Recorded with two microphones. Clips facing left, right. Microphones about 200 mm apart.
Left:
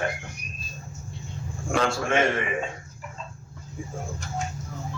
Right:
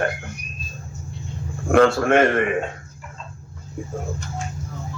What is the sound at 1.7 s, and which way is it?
Speech, 60° right (ahead or behind).